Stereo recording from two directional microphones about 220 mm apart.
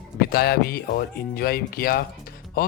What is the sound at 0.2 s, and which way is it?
Speech, 45° left (ahead or behind).